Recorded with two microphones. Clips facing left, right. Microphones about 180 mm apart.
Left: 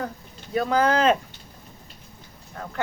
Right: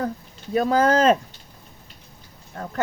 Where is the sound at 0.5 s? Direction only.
40° right (ahead or behind).